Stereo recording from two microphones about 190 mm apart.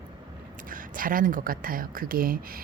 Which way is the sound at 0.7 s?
45° right (ahead or behind).